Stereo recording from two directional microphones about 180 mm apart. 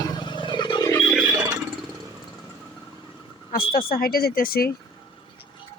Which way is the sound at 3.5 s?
55° left (ahead or behind).